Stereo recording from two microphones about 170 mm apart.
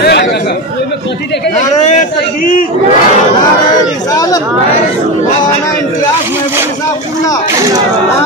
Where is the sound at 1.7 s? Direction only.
45° left (ahead or behind).